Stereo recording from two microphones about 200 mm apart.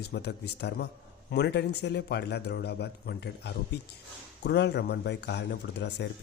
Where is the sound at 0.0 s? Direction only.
55° left (ahead or behind).